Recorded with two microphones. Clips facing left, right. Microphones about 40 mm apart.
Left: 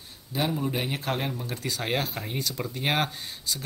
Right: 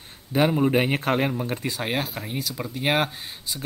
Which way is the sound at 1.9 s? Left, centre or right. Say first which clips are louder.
Right 1 dB; centre.